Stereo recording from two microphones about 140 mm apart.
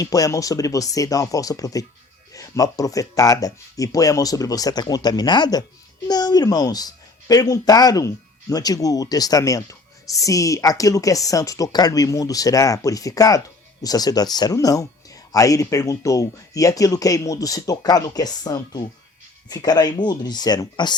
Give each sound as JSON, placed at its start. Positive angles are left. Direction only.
{"t": 0.0, "sound": "speech", "side_deg": 25}